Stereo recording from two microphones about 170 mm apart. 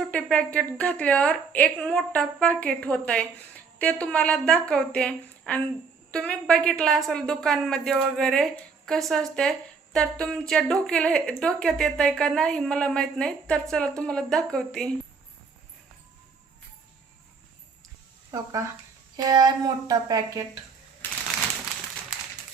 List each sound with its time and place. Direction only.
0.0 s a woman's voice: 5° left (ahead or behind)
19.1 s speech: 25° right (ahead or behind)
21.0 s typewriter: 10° left (ahead or behind)